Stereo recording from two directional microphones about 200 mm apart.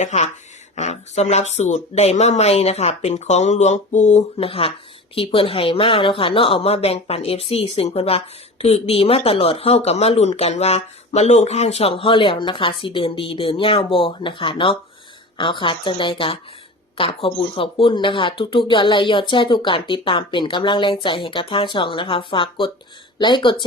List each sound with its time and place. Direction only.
0.0 s speech: 35° left (ahead or behind)